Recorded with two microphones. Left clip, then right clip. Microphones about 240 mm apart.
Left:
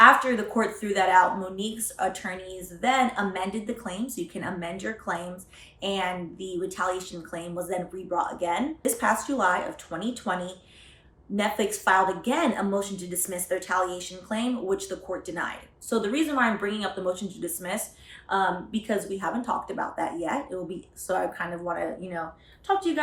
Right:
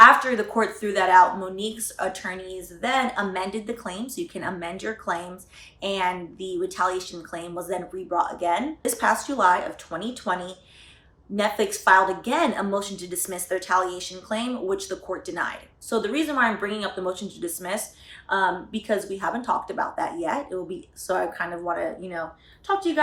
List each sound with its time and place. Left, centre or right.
0.0 s speech: centre